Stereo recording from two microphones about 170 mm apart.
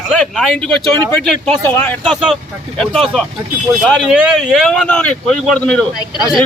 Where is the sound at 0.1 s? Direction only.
Centre (ahead or behind).